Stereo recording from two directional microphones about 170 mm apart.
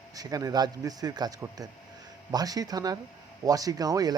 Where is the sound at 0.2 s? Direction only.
20° right (ahead or behind).